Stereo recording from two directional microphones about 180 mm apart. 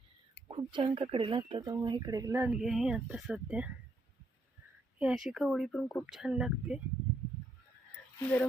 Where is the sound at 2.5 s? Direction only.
Centre (ahead or behind).